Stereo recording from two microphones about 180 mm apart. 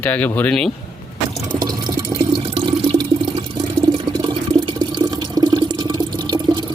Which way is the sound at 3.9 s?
25° right (ahead or behind).